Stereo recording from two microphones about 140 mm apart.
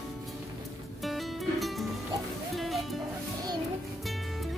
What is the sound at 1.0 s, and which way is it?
Music, centre (ahead or behind).